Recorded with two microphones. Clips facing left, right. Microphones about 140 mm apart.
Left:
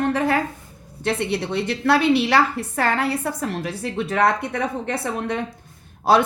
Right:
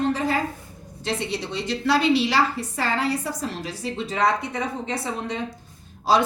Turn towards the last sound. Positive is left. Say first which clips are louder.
# left 3 dB
turn(degrees=55)  # may be behind; listen again after turning